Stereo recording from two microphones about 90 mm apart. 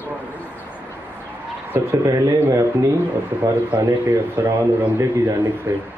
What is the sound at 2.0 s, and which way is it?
Speech, 40° right (ahead or behind).